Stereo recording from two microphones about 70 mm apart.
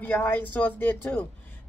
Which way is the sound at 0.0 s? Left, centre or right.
Left.